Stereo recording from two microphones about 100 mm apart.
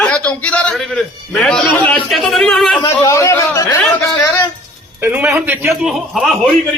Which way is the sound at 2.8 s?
30° left (ahead or behind).